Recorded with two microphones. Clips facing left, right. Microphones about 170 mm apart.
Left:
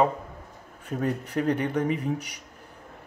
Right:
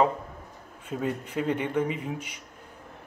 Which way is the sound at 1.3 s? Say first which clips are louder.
Left 2 dB; 40° left (ahead or behind).